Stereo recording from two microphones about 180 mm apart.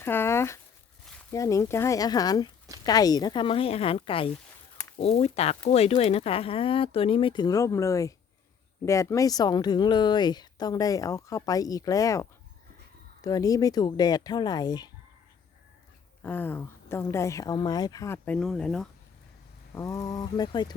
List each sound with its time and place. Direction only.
0.0 s a sound: 15° left (ahead or behind)
1.3 s speech: 15° left (ahead or behind)
16.2 s speech: 10° left (ahead or behind)
19.7 s speech: 15° left (ahead or behind)